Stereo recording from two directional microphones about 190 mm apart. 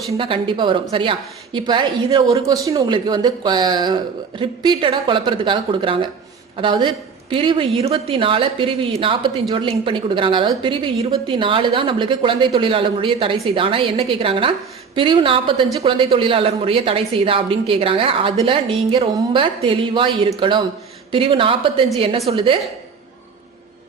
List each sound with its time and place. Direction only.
0.2 s a woman's voice: 25° right (ahead or behind)